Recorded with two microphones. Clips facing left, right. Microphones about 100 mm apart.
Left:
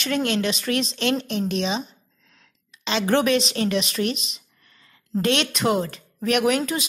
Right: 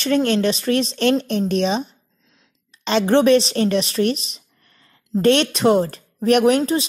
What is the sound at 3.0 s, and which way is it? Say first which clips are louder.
A woman's voice: right 6 dB; 25° right (ahead or behind).